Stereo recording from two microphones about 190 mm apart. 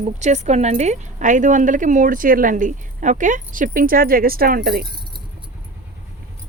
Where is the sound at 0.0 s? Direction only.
40° right (ahead or behind).